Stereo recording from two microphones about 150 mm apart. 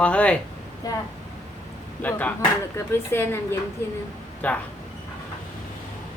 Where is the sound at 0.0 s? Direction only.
10° left (ahead or behind).